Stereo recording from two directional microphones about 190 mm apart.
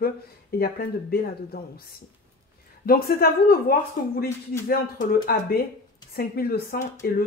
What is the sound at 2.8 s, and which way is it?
Speech, 50° left (ahead or behind).